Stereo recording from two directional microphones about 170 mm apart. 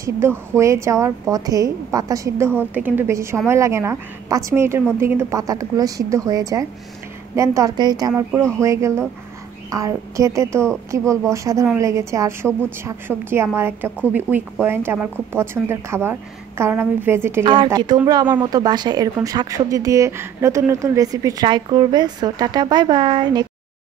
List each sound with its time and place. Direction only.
0.0 s speech: 15° right (ahead or behind)
17.6 s speech: 25° right (ahead or behind)